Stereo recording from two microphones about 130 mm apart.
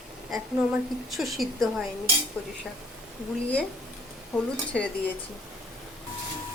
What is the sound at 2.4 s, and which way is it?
Cutlery, 10° left (ahead or behind).